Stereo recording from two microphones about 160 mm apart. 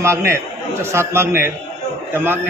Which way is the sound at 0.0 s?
15° right (ahead or behind).